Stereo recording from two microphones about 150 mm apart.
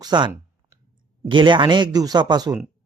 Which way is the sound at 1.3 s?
30° right (ahead or behind).